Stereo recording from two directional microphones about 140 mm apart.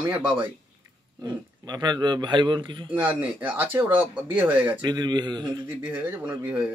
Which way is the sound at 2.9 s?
15° right (ahead or behind).